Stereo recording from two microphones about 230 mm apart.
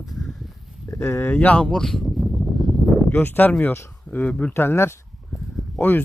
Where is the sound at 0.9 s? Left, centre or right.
Centre.